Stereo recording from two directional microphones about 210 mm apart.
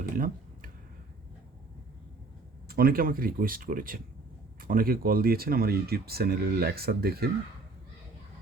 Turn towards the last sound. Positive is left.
turn(degrees=-45)  # may be behind; listen again after turning